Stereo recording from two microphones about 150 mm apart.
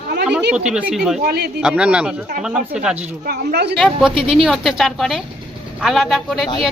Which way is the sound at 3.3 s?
90° right.